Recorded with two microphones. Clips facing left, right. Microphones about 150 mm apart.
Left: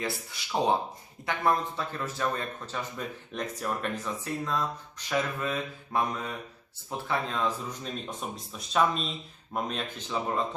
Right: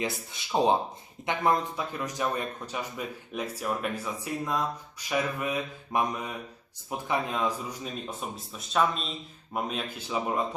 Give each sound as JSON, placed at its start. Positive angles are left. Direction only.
{"t": 0.0, "sound": "speech", "side_deg": -20}